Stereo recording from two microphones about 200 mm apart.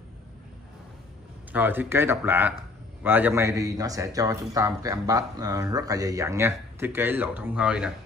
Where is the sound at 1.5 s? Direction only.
10° right (ahead or behind).